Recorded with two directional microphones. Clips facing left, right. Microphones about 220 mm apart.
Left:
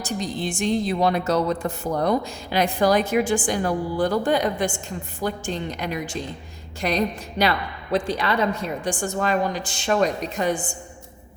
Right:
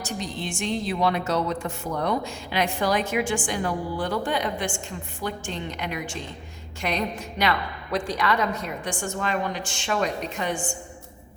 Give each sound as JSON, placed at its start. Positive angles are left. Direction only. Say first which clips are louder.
{"t": 0.0, "sound": "a woman's voice", "louder": "left 4 dB", "side_deg": 35}